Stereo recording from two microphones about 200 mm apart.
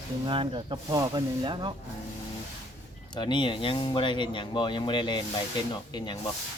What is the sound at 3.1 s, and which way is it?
Speech, 25° left (ahead or behind).